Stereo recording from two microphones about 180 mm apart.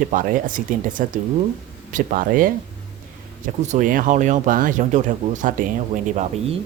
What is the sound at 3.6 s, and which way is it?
Speech, 40° right (ahead or behind).